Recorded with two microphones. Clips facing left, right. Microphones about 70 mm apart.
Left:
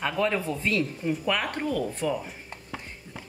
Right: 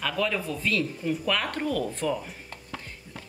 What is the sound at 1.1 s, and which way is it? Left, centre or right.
Speech, centre.